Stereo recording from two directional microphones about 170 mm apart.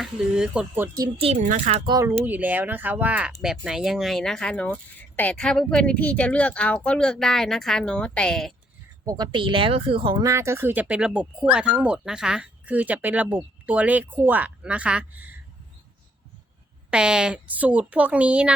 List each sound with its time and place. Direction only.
0.0 s speech: 5° right (ahead or behind)
1.0 s speech: 35° right (ahead or behind)
1.8 s speech: 25° right (ahead or behind)
2.2 s speech: 10° right (ahead or behind)
9.0 s speech: 25° right (ahead or behind)
16.9 s speech: 5° right (ahead or behind)